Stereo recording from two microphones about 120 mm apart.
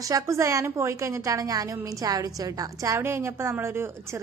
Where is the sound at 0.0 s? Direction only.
30° right (ahead or behind).